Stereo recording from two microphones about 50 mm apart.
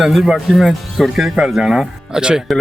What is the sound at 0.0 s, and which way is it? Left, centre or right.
Speech, centre.